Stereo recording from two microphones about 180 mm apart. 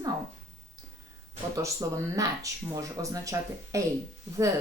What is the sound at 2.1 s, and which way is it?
Speech, 20° right (ahead or behind).